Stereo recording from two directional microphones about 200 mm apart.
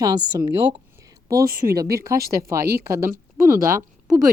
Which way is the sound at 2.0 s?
15° right (ahead or behind).